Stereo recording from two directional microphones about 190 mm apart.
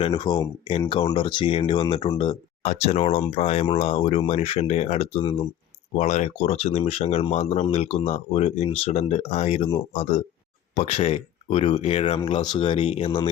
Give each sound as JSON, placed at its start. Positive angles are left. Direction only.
{"t": 0.0, "sound": "speech", "side_deg": 25}